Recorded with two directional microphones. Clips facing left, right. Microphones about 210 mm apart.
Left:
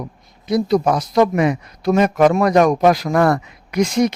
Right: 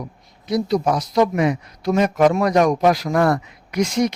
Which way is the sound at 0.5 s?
55° left (ahead or behind).